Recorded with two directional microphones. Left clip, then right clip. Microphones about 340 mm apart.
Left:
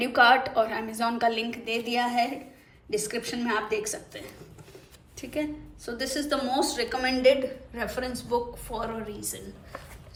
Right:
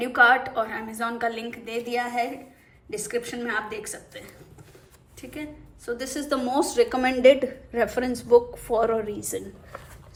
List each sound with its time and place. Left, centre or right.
0.0 s a woman's voice: centre